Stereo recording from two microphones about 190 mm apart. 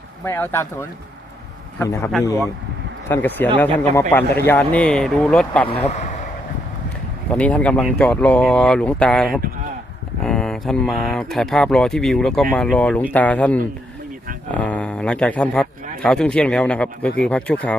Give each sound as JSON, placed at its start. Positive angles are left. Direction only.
{"t": 0.3, "sound": "speech", "side_deg": 10}
{"t": 3.1, "sound": "a man's voice", "side_deg": 10}
{"t": 5.6, "sound": "speech", "side_deg": 35}
{"t": 7.3, "sound": "a man's voice", "side_deg": 5}